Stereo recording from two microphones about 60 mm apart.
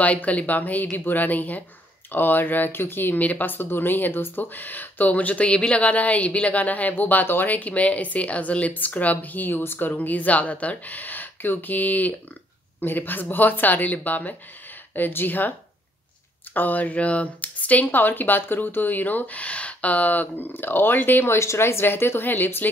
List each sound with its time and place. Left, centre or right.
0.0 s speech: left
16.5 s speech: left
21.3 s speech: left